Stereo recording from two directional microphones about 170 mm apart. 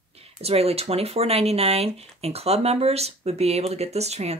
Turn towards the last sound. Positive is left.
turn(degrees=-40)  # may be behind; listen again after turning